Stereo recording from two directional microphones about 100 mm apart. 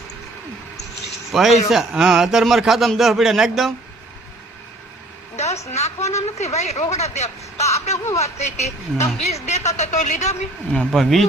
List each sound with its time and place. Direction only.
1.3 s a man's voice: centre (ahead or behind)
5.4 s a woman's voice: 90° left
7.9 s speech: 30° left (ahead or behind)
8.2 s a woman's voice: 90° left
10.7 s a man's voice: 5° left (ahead or behind)